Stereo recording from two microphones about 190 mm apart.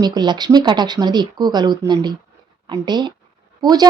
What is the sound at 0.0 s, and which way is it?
Speech, 20° right (ahead or behind).